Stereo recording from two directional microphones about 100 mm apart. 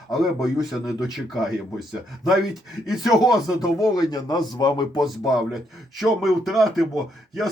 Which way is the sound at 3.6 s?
40° left (ahead or behind).